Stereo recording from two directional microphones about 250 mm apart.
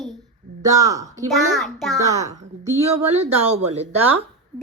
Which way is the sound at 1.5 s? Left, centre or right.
Centre.